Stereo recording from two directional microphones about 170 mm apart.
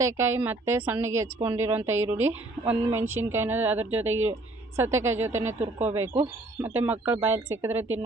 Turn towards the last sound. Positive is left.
turn(degrees=-15)  # may be behind; listen again after turning